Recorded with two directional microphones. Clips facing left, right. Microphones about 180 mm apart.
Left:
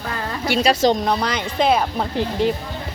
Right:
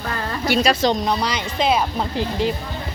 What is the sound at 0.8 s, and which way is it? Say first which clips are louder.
Speech: left 2 dB; 55° left (ahead or behind).